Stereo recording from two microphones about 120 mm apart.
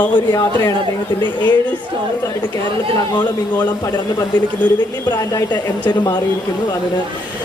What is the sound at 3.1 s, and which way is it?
Speech, 35° left (ahead or behind).